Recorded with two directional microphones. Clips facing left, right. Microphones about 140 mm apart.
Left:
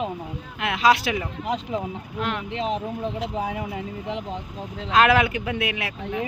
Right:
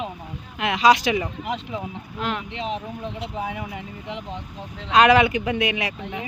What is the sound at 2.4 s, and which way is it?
Speech, 40° left (ahead or behind).